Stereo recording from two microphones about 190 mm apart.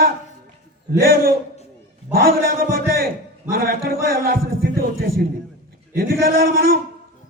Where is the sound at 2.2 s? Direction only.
50° right (ahead or behind).